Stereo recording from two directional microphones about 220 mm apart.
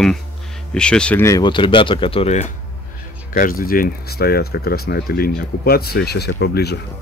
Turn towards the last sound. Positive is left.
turn(degrees=45)  # may be behind; listen again after turning